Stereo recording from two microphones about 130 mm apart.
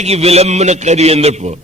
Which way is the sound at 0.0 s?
55° right (ahead or behind).